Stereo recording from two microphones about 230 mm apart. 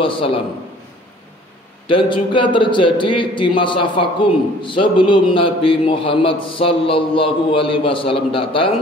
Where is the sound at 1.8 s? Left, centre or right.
Left.